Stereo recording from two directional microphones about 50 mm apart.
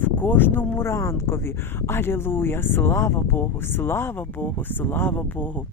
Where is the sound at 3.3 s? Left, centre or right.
Left.